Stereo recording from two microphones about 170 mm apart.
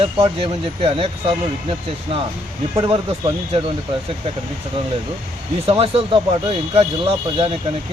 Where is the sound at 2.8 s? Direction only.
30° right (ahead or behind).